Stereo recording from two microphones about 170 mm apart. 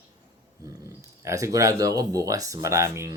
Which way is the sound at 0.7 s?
20° right (ahead or behind).